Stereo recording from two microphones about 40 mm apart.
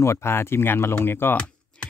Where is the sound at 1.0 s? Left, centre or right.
Left.